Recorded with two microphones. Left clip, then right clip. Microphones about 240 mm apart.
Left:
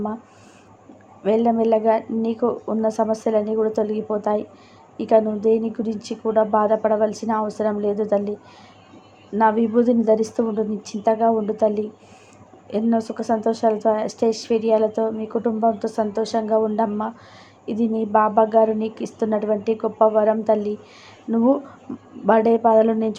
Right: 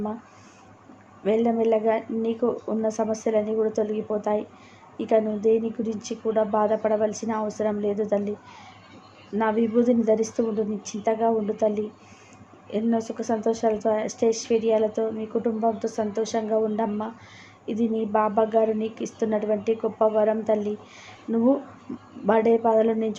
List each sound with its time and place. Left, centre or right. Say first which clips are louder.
1.2 s a woman's voice: left 4 dB; centre
9.4 s a woman's voice: left 5 dB; centre